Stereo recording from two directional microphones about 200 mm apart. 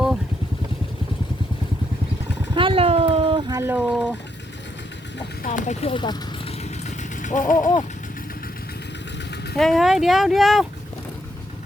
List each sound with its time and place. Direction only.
2.6 s cat: 25° right (ahead or behind)
3.5 s a sound: 10° right (ahead or behind)
5.4 s vehicle: 40° left (ahead or behind)
9.6 s speech: centre (ahead or behind)